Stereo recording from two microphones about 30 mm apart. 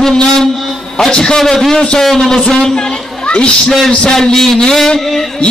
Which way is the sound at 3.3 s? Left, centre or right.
Left.